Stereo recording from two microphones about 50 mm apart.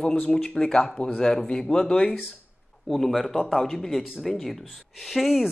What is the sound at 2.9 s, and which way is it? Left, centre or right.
Speech, centre.